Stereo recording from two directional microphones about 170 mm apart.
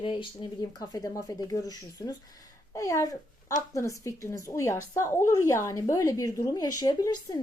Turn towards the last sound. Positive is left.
turn(degrees=20)  # may be behind; listen again after turning